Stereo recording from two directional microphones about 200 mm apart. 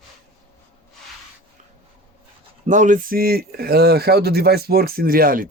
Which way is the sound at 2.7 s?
40° right (ahead or behind).